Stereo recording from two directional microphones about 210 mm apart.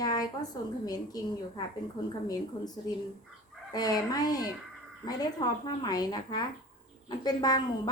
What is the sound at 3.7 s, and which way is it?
A woman's voice, 20° left (ahead or behind).